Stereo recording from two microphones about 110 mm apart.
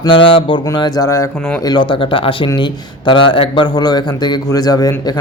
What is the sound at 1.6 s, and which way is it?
Speech, 45° left (ahead or behind).